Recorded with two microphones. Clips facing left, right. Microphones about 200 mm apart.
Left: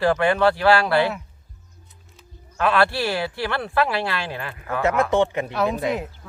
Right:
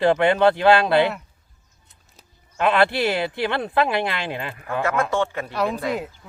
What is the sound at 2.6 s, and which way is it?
Speech, 20° right (ahead or behind).